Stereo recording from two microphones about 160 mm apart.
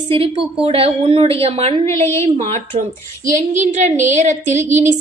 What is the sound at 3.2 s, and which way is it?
Speech, 50° right (ahead or behind).